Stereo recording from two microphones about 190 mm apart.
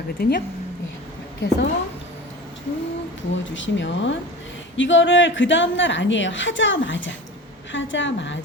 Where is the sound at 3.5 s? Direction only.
75° left (ahead or behind).